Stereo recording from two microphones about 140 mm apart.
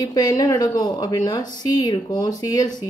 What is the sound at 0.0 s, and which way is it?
Speech, 25° left (ahead or behind).